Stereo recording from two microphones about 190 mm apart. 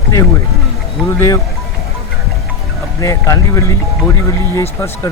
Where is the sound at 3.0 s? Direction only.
15° left (ahead or behind).